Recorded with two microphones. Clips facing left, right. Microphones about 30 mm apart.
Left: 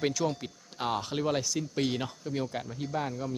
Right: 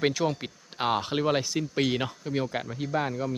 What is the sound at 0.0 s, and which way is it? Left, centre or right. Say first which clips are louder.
Speech: right 3 dB; right.